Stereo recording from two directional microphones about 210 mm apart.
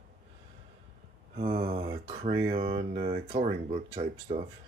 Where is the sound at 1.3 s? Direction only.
25° right (ahead or behind).